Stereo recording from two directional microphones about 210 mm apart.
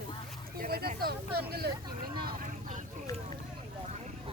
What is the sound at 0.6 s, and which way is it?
Vehicle, 45° right (ahead or behind).